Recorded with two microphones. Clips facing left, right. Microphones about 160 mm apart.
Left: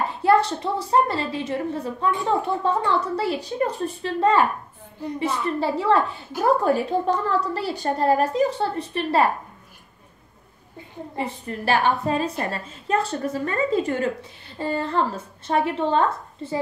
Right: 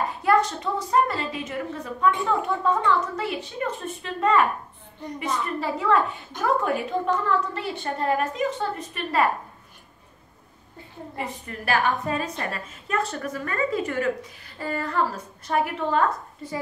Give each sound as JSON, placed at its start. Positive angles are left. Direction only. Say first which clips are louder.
{"t": 0.2, "sound": "a woman's voice", "louder": "left 3 dB", "side_deg": 30}
{"t": 5.6, "sound": "a woman's voice", "louder": "left 2 dB", "side_deg": 30}
{"t": 11.1, "sound": "a woman's voice", "louder": "left 5 dB", "side_deg": 30}